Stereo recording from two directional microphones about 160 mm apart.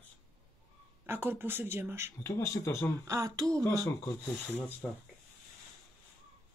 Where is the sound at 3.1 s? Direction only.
20° right (ahead or behind).